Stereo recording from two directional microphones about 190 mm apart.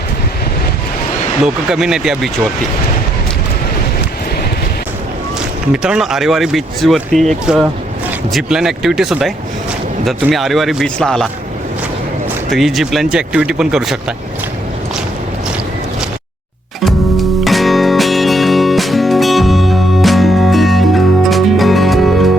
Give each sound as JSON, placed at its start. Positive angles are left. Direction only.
{"t": 1.7, "sound": "speech", "side_deg": -5}
{"t": 5.7, "sound": "speech", "side_deg": -5}
{"t": 12.5, "sound": "speech", "side_deg": 0}
{"t": 16.8, "sound": "music", "side_deg": 0}